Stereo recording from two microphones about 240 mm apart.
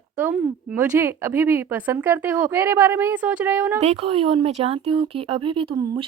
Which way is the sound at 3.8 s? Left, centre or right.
Right.